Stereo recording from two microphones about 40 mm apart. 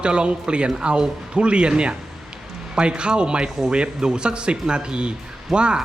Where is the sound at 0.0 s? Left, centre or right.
Right.